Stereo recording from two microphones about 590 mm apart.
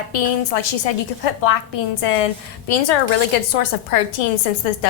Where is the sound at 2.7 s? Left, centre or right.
Left.